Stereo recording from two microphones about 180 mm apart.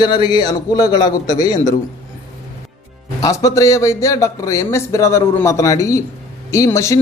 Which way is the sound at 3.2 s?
20° left (ahead or behind).